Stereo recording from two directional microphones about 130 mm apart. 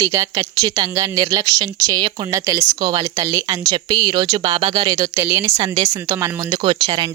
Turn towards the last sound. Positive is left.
turn(degrees=-35)  # may be behind; listen again after turning